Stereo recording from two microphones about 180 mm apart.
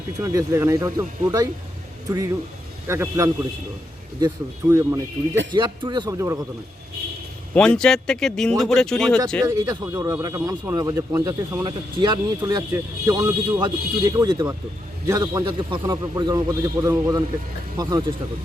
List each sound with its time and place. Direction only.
0.2 s speech: 15° right (ahead or behind)
2.8 s speech: 15° right (ahead or behind)
4.7 s speech: 15° right (ahead or behind)
5.5 s a man's voice: 25° right (ahead or behind)
7.5 s speech: 5° left (ahead or behind)
9.5 s a man's voice: 20° right (ahead or behind)
12.7 s speech: 15° right (ahead or behind)
13.6 s a man's voice: 25° right (ahead or behind)